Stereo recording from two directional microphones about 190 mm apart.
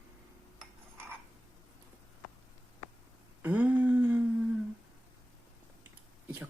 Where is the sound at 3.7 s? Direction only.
10° right (ahead or behind).